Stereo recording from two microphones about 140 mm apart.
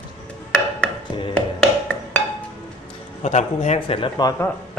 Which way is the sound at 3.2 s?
55° left (ahead or behind).